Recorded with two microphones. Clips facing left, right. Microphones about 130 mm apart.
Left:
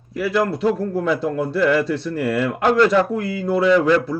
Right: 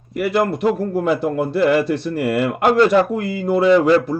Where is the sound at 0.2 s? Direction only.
55° right (ahead or behind).